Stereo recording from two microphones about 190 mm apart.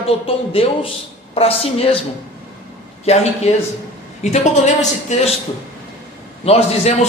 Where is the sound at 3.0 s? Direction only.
35° left (ahead or behind).